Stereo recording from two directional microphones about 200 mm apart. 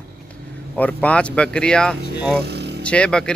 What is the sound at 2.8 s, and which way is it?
Speech, 5° left (ahead or behind).